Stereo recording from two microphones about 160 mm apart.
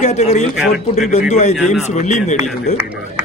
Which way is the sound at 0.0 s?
45° left (ahead or behind).